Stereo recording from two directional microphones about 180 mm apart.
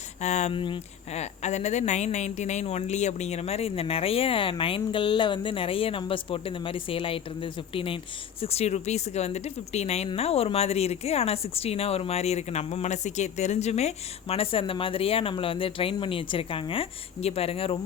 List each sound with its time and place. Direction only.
0.2 s speech: 40° left (ahead or behind)